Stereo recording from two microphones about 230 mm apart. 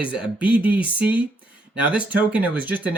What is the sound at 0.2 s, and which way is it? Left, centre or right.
Speech, centre.